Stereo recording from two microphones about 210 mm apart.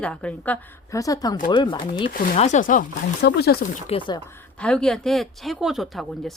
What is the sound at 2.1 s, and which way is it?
Speech, 35° left (ahead or behind).